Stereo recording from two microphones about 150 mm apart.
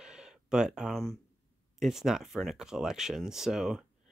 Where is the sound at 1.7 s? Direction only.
Centre (ahead or behind).